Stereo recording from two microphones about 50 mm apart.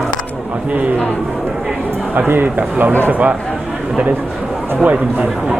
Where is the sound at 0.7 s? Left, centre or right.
Right.